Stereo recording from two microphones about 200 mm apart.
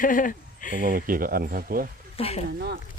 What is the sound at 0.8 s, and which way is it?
Speech, 45° right (ahead or behind).